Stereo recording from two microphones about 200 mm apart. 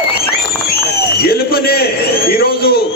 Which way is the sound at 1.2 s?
50° left (ahead or behind).